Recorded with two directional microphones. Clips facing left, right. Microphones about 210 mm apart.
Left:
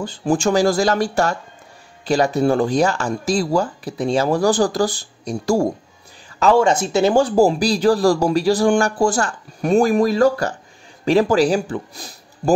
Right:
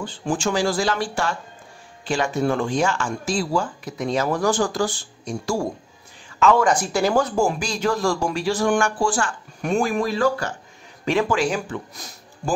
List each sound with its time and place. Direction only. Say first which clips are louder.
0.0 s speech: left 5 dB; 40° left (ahead or behind)
6.4 s a man's voice: left 3 dB; 30° left (ahead or behind)